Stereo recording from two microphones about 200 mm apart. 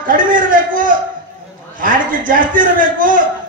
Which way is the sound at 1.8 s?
40° right (ahead or behind).